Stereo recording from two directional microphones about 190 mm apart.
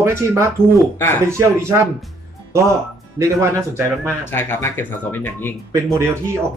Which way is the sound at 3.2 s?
15° right (ahead or behind).